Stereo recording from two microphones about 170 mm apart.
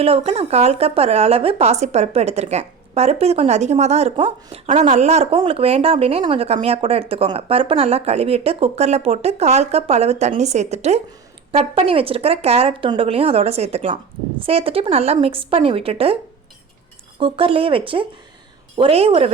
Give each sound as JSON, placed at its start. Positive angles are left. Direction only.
{"t": 0.0, "sound": "speech", "side_deg": -35}
{"t": 17.2, "sound": "speech", "side_deg": -30}